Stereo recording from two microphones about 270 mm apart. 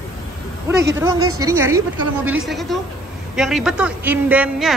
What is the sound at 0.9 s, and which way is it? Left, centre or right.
A woman's voice, centre.